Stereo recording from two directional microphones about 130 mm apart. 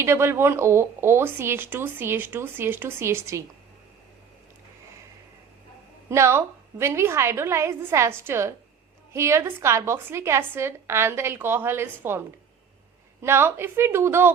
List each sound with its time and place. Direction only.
0.0 s speech: 20° right (ahead or behind)
6.1 s a woman's voice: 20° right (ahead or behind)
13.2 s a woman's voice: 20° right (ahead or behind)